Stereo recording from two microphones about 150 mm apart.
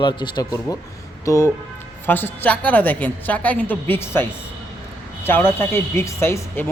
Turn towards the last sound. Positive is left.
turn(degrees=15)  # may be behind; listen again after turning